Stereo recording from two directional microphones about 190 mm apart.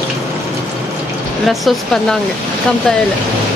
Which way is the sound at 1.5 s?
Centre (ahead or behind).